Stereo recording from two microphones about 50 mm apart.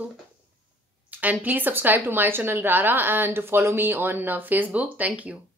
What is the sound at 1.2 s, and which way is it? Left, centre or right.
A woman's voice, right.